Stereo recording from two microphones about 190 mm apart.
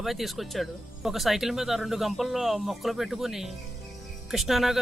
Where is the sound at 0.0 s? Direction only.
Centre (ahead or behind).